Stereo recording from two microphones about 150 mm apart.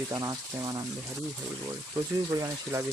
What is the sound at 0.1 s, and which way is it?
Speech, 25° right (ahead or behind).